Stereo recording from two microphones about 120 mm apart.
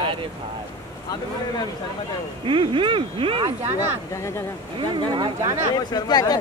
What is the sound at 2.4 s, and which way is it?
Speech, 45° right (ahead or behind).